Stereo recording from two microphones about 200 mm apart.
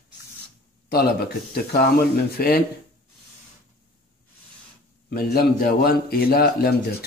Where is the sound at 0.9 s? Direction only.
50° left (ahead or behind).